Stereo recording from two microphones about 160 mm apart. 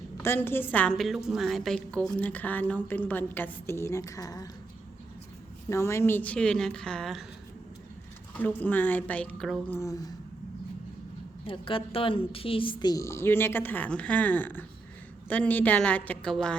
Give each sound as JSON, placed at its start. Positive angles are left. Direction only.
{"t": 0.2, "sound": "a woman's voice", "side_deg": 15}
{"t": 5.6, "sound": "a woman's voice", "side_deg": 15}
{"t": 8.4, "sound": "a woman's voice", "side_deg": 10}
{"t": 9.7, "sound": "speech", "side_deg": 20}
{"t": 11.4, "sound": "a woman's voice", "side_deg": 35}